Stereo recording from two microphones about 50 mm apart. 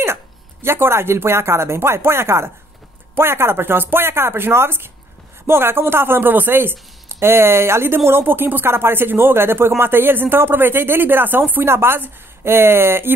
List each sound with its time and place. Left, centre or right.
0.0 s speech: right
11.6 s speech: right